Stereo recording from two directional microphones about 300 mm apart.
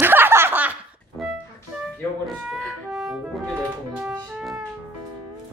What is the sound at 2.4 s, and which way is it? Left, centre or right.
Music, centre.